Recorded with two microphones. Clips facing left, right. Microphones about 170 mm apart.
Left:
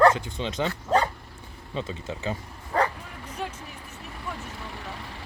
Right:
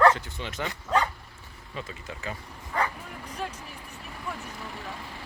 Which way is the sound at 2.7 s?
40° left (ahead or behind).